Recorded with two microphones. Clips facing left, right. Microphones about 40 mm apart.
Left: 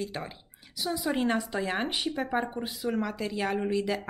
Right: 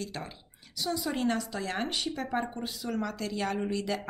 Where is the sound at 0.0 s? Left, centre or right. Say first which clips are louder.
Left 3 dB; centre.